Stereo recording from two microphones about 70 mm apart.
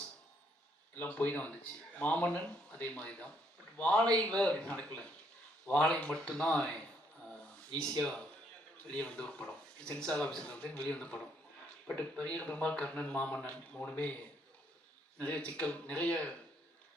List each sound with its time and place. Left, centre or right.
0.9 s speech: left
7.3 s a sound: centre
8.8 s speech: centre
15.2 s speech: centre